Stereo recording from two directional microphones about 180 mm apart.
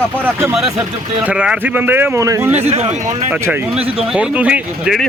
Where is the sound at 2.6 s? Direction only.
35° right (ahead or behind).